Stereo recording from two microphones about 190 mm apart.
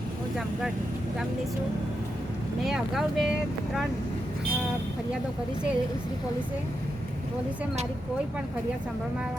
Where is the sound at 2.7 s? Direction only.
Centre (ahead or behind).